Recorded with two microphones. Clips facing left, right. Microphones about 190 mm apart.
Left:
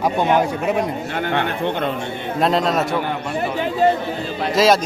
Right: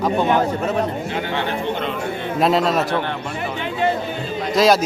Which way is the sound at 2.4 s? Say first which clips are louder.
Right 1 dB; centre (ahead or behind).